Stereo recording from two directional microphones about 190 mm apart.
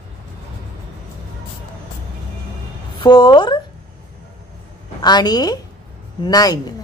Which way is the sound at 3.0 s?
25° left (ahead or behind).